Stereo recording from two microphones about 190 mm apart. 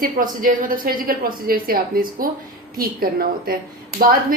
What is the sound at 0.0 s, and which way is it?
A woman's voice, 45° right (ahead or behind).